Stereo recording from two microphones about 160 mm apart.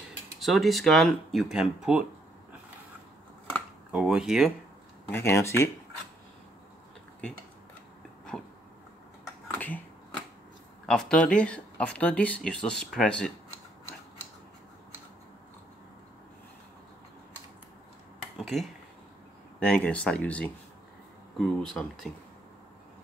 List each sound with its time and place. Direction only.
0.4 s speech: centre (ahead or behind)
3.9 s speech: 5° right (ahead or behind)
5.1 s speech: 15° left (ahead or behind)
9.5 s finger snapping: 10° left (ahead or behind)
10.9 s speech: 5° left (ahead or behind)
18.4 s a sound: centre (ahead or behind)
19.6 s speech: 5° left (ahead or behind)